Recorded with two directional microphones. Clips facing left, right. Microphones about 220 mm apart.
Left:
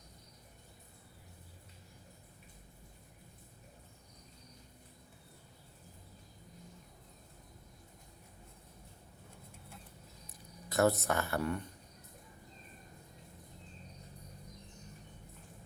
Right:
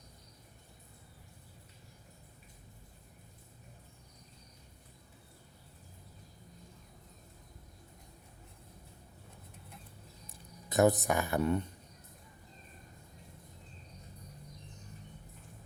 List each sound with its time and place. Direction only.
10.2 s speech: 20° right (ahead or behind)